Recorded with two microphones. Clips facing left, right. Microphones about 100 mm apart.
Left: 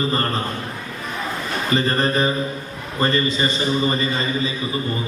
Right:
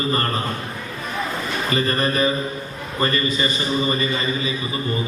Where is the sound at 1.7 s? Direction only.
30° left (ahead or behind).